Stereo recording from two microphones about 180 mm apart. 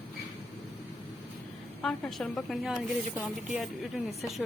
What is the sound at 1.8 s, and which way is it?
A woman's voice, centre (ahead or behind).